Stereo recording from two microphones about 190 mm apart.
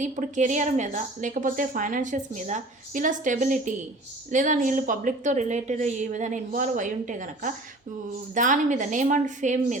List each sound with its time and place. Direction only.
0.0 s a woman's voice: 40° right (ahead or behind)